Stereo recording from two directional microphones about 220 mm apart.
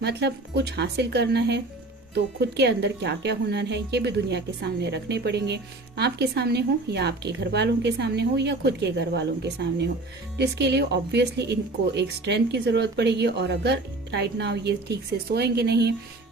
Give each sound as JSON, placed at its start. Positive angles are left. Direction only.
{"t": 0.0, "sound": "speech", "side_deg": -50}